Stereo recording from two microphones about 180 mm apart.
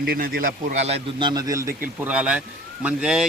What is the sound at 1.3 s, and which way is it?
Speech, 20° right (ahead or behind).